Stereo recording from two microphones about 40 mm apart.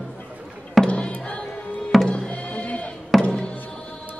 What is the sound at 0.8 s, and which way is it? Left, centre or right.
Music, left.